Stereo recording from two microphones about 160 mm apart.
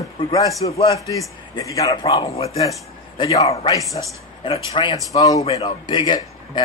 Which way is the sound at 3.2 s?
30° left (ahead or behind).